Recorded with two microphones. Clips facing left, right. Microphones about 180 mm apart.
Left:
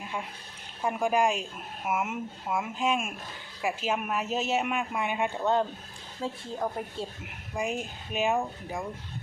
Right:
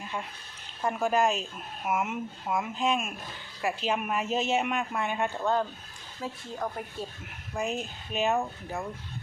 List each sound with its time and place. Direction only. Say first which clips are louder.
0.8 s speech: even; 10° left (ahead or behind); by 6.4 s 25° left (ahead or behind)
7.5 s speech: even; 10° left (ahead or behind)